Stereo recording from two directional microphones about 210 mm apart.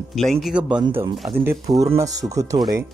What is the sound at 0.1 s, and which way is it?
Speech, centre (ahead or behind).